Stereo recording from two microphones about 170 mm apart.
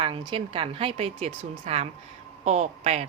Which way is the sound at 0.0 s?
30° right (ahead or behind).